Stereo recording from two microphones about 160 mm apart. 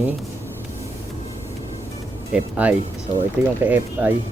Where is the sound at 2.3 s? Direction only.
10° right (ahead or behind).